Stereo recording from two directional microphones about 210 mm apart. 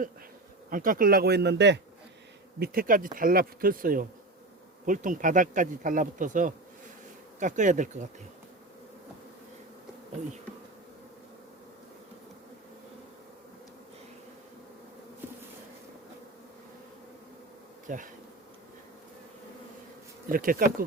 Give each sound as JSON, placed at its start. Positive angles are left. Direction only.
{"t": 0.7, "sound": "speech", "side_deg": -40}
{"t": 2.6, "sound": "speech", "side_deg": -40}
{"t": 17.8, "sound": "bee", "side_deg": -40}
{"t": 20.3, "sound": "speech", "side_deg": -40}